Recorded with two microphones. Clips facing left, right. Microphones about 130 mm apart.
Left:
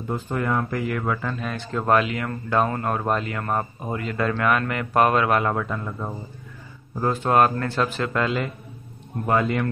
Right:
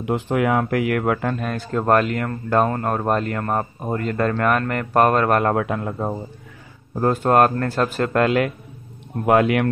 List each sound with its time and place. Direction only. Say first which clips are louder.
0.0 s speech: right 6 dB; 85° right; by 2.2 s 45° right (ahead or behind)
2.6 s a man's voice: right 3 dB; centre (ahead or behind)
3.2 s speech: right 5 dB; 45° right (ahead or behind)
3.4 s a man's voice: right 3 dB; centre (ahead or behind)
3.9 s a man's voice: right 4 dB; 45° right (ahead or behind); by 6.0 s 65° right (ahead or behind)
7.0 s speech: right 3 dB; 50° right (ahead or behind); by 9.7 s 70° right (ahead or behind)